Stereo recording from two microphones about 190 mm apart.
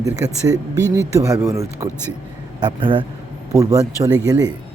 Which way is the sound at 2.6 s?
25° right (ahead or behind).